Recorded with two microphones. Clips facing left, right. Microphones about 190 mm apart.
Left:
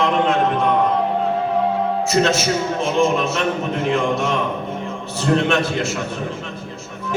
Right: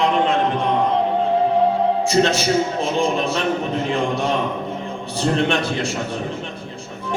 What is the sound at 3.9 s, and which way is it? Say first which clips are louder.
Speech: left 4 dB; 35° right (ahead or behind).